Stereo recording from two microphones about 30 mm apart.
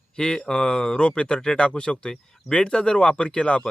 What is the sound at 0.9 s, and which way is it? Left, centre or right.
Speech, left.